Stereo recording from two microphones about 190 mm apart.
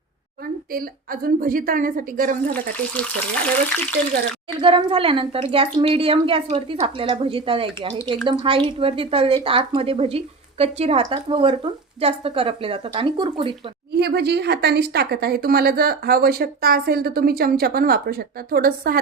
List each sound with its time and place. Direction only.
0.7 s a woman's voice: 50° right (ahead or behind)
2.5 s speech: 5° left (ahead or behind)
4.6 s a woman's voice: 30° right (ahead or behind)
13.9 s a woman's voice: 60° right (ahead or behind)